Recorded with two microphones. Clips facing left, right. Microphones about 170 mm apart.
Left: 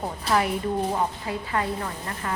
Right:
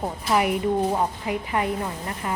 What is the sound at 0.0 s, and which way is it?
A woman's voice, 15° right (ahead or behind).